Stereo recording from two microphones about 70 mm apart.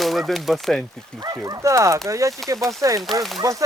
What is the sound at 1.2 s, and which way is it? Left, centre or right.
Speech, right.